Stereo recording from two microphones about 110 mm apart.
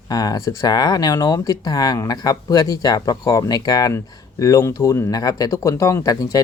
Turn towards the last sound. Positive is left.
turn(degrees=35)  # may be behind; listen again after turning